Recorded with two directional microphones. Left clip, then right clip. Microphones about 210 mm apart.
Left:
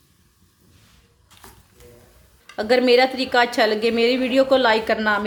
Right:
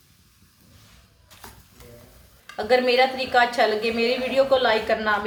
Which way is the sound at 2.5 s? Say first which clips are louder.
Left 3 dB; 50° left (ahead or behind).